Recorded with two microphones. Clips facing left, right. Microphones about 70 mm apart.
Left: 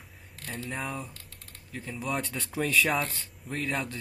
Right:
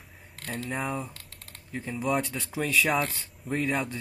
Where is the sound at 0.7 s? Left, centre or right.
Centre.